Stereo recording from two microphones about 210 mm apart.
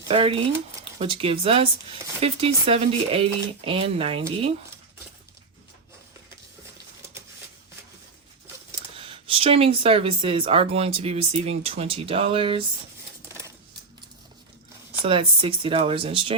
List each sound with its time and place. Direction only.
0.1 s speech: 25° right (ahead or behind)
9.0 s speech: 25° right (ahead or behind)
13.2 s typewriter: 10° right (ahead or behind)
15.0 s speech: 25° right (ahead or behind)